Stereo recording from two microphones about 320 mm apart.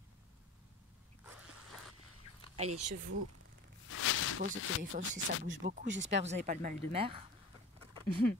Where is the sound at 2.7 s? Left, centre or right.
Right.